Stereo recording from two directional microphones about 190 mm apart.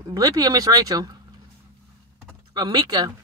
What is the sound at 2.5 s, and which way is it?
Speech, 20° right (ahead or behind).